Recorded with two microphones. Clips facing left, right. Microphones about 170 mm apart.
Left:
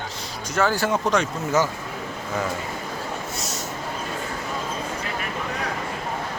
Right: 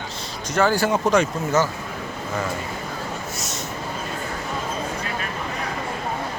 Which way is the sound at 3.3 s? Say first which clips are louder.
Even; 35° left (ahead or behind).